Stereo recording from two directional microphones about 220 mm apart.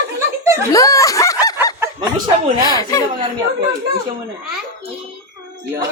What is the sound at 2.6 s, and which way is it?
Speech, 15° left (ahead or behind).